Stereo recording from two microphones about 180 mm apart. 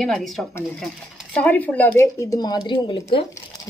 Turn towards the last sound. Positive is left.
turn(degrees=25)  # may be behind; listen again after turning